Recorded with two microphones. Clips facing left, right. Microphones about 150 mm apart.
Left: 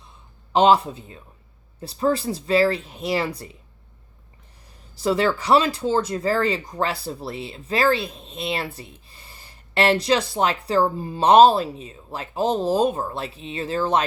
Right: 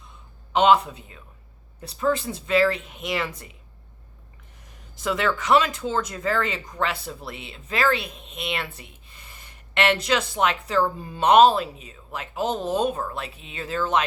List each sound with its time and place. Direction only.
0.0 s a sound: 35° left (ahead or behind)
1.9 s speech: 35° left (ahead or behind)
4.9 s speech: 35° left (ahead or behind)